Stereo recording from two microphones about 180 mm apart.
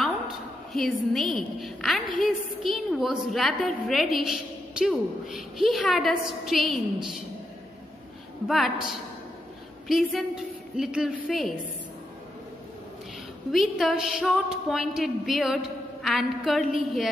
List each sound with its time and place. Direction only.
0.7 s a woman's voice: centre (ahead or behind)
8.5 s a woman's voice: centre (ahead or behind)
13.5 s a woman's voice: centre (ahead or behind)